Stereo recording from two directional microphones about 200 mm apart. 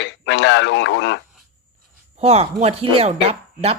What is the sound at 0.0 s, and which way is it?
Speech, 60° left (ahead or behind).